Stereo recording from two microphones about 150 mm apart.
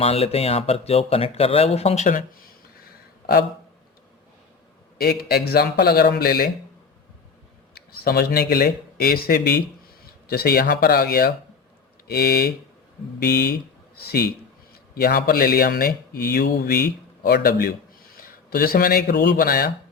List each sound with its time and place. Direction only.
0.0 s speech: 40° left (ahead or behind)
2.8 s a sound: 90° left
4.9 s speech: 90° left
7.8 s speech: 90° left